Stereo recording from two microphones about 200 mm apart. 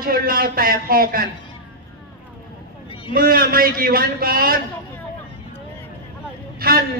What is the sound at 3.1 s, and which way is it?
Speech, 45° right (ahead or behind).